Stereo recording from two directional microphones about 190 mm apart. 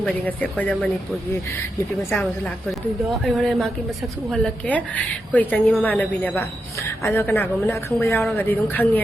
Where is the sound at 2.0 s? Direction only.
10° left (ahead or behind).